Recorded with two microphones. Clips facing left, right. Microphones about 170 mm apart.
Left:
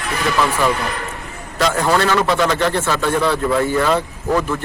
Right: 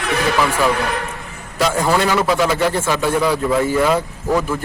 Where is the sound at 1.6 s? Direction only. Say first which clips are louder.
Even; 5° right (ahead or behind).